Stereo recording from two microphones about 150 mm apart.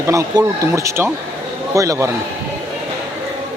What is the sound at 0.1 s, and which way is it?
Speech, 20° right (ahead or behind).